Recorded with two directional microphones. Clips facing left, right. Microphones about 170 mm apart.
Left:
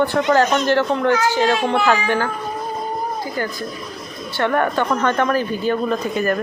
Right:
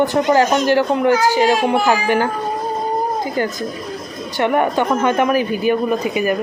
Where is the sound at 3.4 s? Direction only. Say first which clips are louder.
Right 4 dB; 20° right (ahead or behind).